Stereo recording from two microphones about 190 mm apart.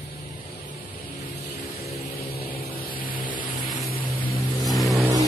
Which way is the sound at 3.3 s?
25° left (ahead or behind).